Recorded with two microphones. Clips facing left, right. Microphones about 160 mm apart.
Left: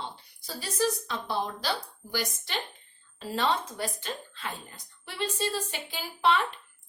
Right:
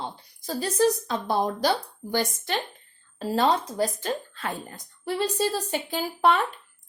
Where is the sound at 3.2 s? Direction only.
40° right (ahead or behind).